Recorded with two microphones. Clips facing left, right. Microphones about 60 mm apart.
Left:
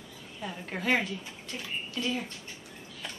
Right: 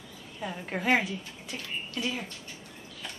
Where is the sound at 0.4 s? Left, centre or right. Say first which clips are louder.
Right 3 dB; centre.